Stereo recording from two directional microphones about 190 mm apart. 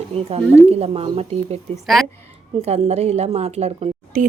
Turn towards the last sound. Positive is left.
turn(degrees=-35)  # may be behind; listen again after turning